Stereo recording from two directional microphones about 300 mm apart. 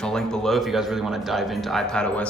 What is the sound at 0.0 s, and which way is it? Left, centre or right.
Speech, centre.